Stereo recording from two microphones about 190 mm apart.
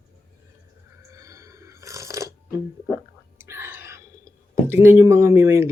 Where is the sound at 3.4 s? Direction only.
15° right (ahead or behind).